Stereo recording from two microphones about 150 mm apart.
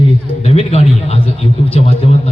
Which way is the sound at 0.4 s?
45° left (ahead or behind).